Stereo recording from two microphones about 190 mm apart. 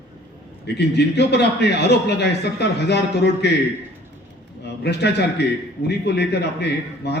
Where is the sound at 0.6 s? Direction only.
60° left (ahead or behind).